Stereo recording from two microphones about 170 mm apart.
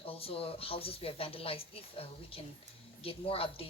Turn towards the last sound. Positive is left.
turn(degrees=35)  # may be behind; listen again after turning